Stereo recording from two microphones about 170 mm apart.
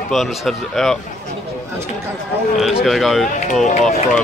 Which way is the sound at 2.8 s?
Centre (ahead or behind).